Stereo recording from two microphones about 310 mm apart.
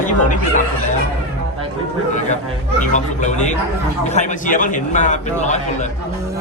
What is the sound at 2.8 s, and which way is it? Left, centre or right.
Speech, left.